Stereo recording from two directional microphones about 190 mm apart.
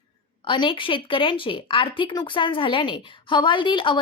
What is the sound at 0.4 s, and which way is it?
Speech, 25° left (ahead or behind).